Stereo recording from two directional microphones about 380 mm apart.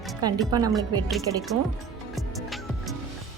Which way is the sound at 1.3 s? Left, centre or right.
Right.